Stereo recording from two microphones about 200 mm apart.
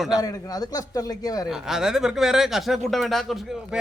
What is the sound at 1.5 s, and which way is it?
Speech, centre (ahead or behind).